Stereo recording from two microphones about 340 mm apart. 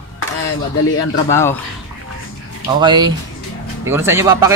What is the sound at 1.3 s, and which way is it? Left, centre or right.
Speech, centre.